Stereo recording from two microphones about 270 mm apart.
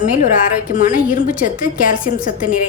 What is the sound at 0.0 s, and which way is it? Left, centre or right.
A woman's voice, left.